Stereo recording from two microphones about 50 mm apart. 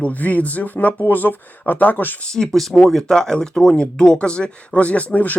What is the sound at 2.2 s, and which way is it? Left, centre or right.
A man's voice, centre.